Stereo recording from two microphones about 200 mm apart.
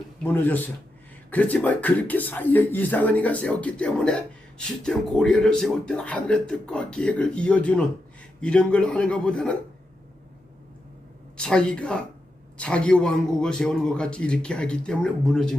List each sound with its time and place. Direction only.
0.2 s a man's voice: 10° left (ahead or behind)
11.3 s a man's voice: 5° left (ahead or behind)